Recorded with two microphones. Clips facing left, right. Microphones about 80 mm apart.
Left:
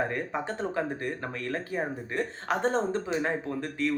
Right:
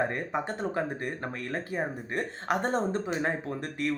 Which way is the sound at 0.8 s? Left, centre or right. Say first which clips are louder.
Left 1 dB; right.